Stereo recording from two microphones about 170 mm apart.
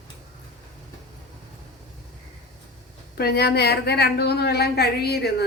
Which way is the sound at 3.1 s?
70° left (ahead or behind).